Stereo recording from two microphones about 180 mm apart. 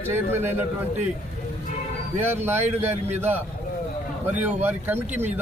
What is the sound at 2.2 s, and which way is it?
A man's voice, 10° right (ahead or behind).